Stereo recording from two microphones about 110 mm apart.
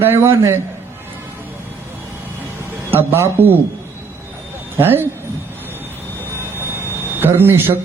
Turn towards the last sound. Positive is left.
turn(degrees=-20)  # may be behind; listen again after turning